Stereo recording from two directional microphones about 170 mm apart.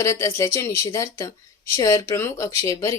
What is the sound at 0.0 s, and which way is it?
A woman's voice, 15° left (ahead or behind).